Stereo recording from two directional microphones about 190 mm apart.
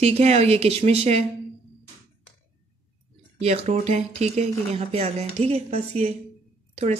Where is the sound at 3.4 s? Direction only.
35° right (ahead or behind).